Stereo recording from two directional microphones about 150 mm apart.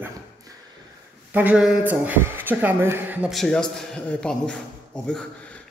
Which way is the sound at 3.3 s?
5° left (ahead or behind).